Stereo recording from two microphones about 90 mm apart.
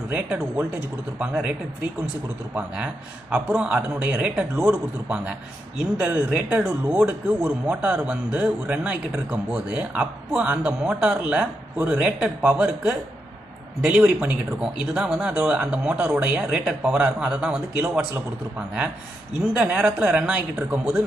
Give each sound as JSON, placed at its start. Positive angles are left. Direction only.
{"t": 0.1, "sound": "speech", "side_deg": -15}
{"t": 19.5, "sound": "speech", "side_deg": -10}